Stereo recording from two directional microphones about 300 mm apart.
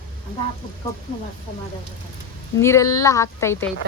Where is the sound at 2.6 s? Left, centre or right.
Centre.